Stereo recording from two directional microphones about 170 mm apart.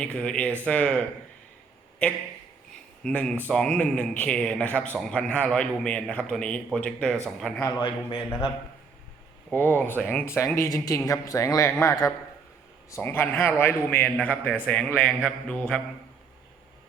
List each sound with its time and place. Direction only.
0.0 s a man's voice: 5° left (ahead or behind)
7.8 s a man's voice: 30° left (ahead or behind)
9.5 s speech: 10° left (ahead or behind)